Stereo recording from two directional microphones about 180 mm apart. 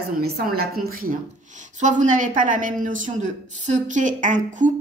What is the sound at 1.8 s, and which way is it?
A woman's voice, 45° right (ahead or behind).